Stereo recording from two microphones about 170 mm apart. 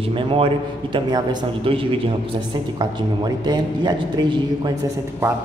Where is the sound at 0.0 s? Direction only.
35° right (ahead or behind).